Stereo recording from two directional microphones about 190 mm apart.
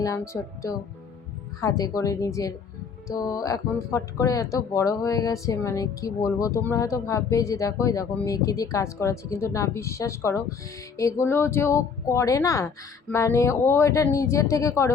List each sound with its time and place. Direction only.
0.3 s speech: 10° left (ahead or behind)
1.6 s speech: 20° left (ahead or behind)